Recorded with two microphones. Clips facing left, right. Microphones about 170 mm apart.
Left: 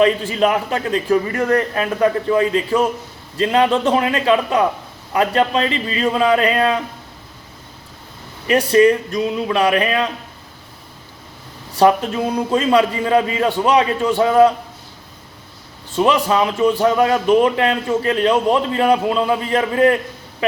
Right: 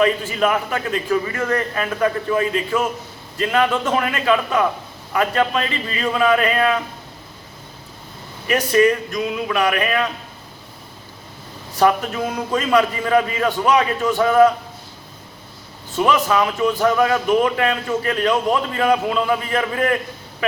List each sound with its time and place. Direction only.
0.0 s a man's voice: 30° left (ahead or behind)
8.4 s a man's voice: 30° left (ahead or behind)
11.8 s a man's voice: 30° left (ahead or behind)
16.0 s a man's voice: 30° left (ahead or behind)